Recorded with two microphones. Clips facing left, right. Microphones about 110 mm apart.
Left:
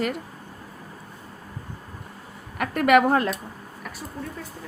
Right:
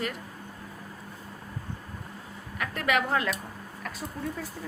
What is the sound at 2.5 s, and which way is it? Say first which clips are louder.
Speech: left 9 dB; 60° left (ahead or behind).